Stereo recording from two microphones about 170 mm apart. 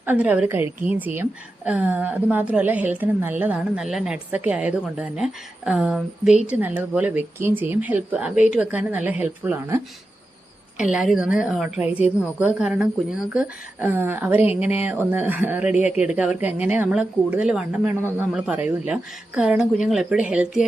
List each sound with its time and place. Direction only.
0.0 s a woman's voice: 10° right (ahead or behind)
14.6 s speech: 40° left (ahead or behind)
14.8 s a woman's voice: 10° right (ahead or behind)